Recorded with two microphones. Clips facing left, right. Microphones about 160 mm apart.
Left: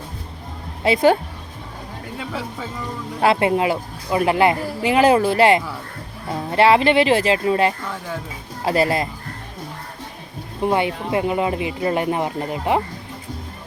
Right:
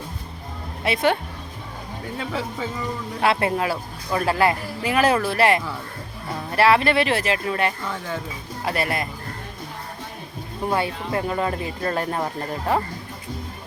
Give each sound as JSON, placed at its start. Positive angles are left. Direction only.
{"t": 2.1, "sound": "speech", "side_deg": 0}
{"t": 3.2, "sound": "speech", "side_deg": 25}
{"t": 7.9, "sound": "speech", "side_deg": 5}
{"t": 8.6, "sound": "speech", "side_deg": 25}
{"t": 10.6, "sound": "speech", "side_deg": 20}